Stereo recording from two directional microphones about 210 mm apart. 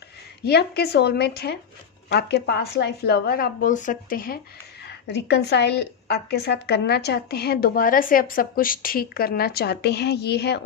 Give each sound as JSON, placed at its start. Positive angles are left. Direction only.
{"t": 0.4, "sound": "a woman's voice", "side_deg": 50}
{"t": 4.9, "sound": "a woman's voice", "side_deg": 55}